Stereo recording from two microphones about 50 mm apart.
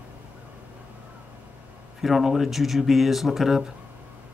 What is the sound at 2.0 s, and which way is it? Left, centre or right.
Speech, centre.